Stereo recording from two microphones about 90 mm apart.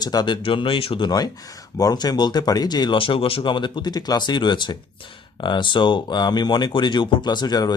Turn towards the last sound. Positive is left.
turn(degrees=50)  # may be behind; listen again after turning